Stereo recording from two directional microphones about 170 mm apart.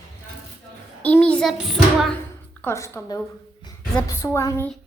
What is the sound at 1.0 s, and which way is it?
Child singing, 10° left (ahead or behind).